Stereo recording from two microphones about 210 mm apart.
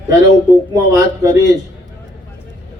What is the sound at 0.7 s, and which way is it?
Speech, 15° right (ahead or behind).